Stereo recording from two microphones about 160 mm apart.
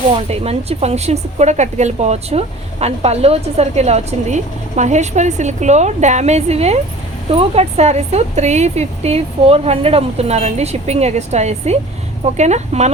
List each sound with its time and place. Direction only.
0.2 s speech: 40° right (ahead or behind)